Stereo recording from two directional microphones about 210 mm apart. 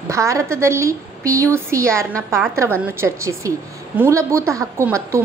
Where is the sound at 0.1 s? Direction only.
15° right (ahead or behind).